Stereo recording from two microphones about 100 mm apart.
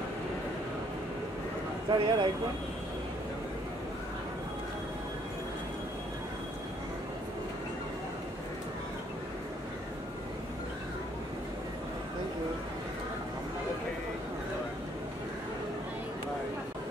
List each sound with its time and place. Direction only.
1.9 s speech: 50° right (ahead or behind)